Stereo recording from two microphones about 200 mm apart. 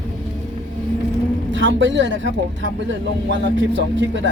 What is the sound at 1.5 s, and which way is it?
Speech, 65° right (ahead or behind).